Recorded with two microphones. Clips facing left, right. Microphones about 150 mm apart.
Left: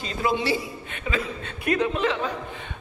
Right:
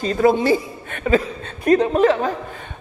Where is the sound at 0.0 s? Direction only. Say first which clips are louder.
Right 9 dB; 45° right (ahead or behind).